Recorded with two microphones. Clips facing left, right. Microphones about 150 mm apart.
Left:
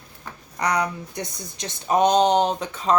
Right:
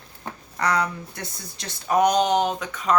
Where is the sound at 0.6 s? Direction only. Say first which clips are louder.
Even; 15° left (ahead or behind).